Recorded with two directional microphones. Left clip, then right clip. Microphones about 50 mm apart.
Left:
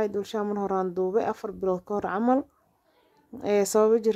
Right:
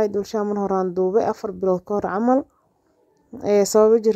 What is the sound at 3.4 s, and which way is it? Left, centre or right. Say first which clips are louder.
Speech: right 6 dB; centre.